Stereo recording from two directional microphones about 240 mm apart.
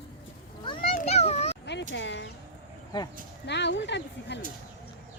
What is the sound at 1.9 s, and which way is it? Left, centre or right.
Speech, left.